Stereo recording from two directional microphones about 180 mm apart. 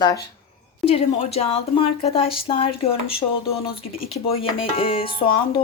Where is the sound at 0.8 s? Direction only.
35° left (ahead or behind).